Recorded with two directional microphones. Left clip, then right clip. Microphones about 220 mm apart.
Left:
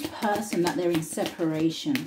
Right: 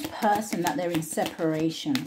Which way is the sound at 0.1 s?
35° right (ahead or behind).